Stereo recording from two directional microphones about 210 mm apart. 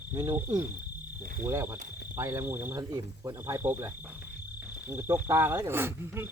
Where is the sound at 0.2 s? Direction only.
20° right (ahead or behind).